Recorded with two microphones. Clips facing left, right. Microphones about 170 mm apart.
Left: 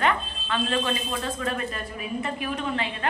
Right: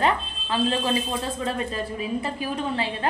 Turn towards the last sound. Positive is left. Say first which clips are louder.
# right 2 dB
turn(degrees=-30)  # may be behind; listen again after turning